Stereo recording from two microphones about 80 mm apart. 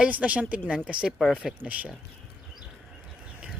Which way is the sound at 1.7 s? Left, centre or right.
Centre.